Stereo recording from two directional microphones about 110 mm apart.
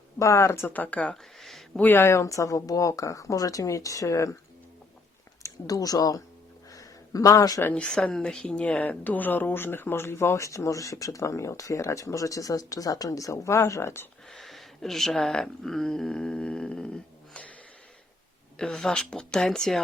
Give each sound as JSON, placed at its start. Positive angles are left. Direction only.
{"t": 0.2, "sound": "speech", "side_deg": 25}
{"t": 0.7, "sound": "speech", "side_deg": 15}
{"t": 1.8, "sound": "speech", "side_deg": 20}
{"t": 5.4, "sound": "speech", "side_deg": 35}
{"t": 6.7, "sound": "a sound", "side_deg": 30}
{"t": 7.6, "sound": "speech", "side_deg": 10}
{"t": 14.3, "sound": "speech", "side_deg": 0}
{"t": 18.5, "sound": "speech", "side_deg": 5}